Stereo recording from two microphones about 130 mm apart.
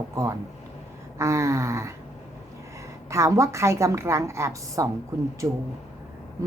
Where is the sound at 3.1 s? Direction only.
25° right (ahead or behind).